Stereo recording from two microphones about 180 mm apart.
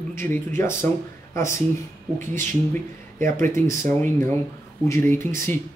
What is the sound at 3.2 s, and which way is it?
Speech, 45° right (ahead or behind).